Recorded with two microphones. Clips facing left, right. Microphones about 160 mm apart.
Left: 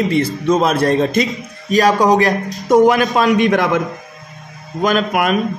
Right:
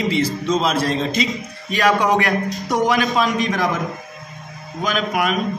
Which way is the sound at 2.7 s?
50° left (ahead or behind).